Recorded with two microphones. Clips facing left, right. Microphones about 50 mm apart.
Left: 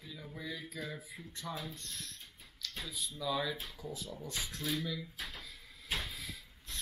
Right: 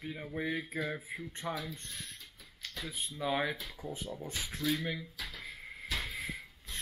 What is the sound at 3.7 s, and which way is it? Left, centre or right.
Speech, right.